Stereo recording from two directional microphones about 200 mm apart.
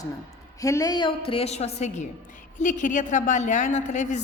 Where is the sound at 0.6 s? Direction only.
15° left (ahead or behind).